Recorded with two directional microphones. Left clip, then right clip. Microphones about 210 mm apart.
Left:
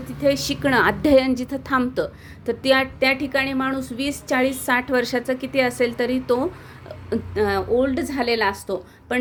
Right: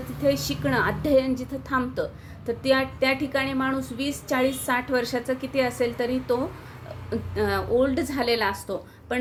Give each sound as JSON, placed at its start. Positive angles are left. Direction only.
{"t": 0.2, "sound": "a woman's voice", "side_deg": 35}